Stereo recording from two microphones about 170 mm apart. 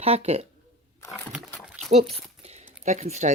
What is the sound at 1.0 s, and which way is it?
Sewing machine, 15° left (ahead or behind).